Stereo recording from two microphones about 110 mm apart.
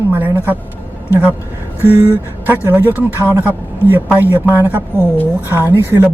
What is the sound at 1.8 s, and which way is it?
Speech, 15° right (ahead or behind).